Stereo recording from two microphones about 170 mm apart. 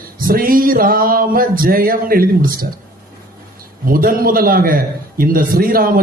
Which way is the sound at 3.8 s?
55° right (ahead or behind).